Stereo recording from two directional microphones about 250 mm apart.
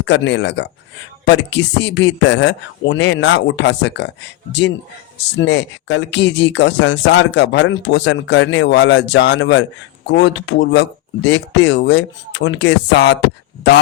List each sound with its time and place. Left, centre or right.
0.0 s speech: left
5.4 s speech: left